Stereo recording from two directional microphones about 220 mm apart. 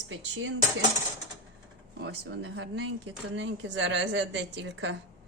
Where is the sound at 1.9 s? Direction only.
50° right (ahead or behind).